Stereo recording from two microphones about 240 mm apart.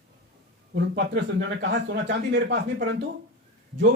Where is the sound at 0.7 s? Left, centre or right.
Right.